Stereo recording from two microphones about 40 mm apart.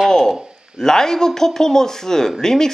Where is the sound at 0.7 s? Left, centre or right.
Centre.